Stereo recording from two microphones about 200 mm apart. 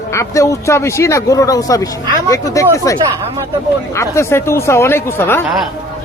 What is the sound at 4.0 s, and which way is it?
Speech, 15° left (ahead or behind).